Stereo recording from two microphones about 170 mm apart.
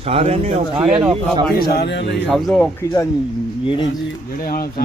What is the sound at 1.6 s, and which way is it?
Speech, 80° left.